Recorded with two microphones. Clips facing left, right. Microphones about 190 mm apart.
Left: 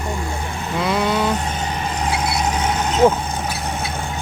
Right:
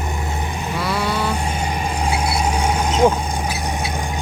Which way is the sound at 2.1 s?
10° right (ahead or behind).